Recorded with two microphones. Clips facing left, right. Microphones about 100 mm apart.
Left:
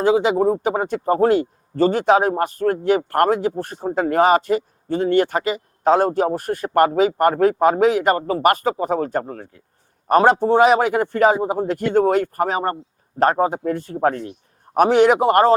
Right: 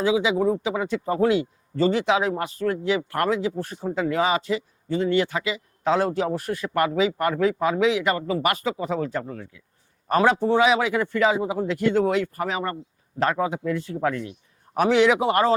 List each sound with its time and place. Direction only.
0.0 s speech: 50° left (ahead or behind)